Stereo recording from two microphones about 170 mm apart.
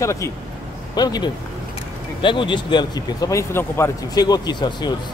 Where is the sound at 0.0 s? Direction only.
15° left (ahead or behind).